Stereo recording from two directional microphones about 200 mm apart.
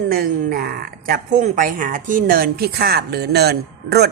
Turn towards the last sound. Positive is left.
turn(degrees=-55)  # may be behind; listen again after turning